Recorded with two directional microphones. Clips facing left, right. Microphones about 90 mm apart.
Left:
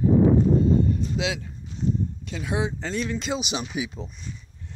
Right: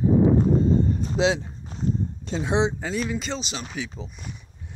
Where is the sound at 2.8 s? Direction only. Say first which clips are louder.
Right 1 dB; 5° right (ahead or behind).